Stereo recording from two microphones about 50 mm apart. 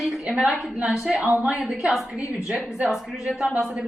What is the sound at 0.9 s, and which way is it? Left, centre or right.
Speech, centre.